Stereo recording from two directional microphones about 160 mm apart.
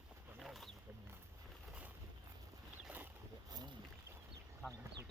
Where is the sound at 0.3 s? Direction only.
Centre (ahead or behind).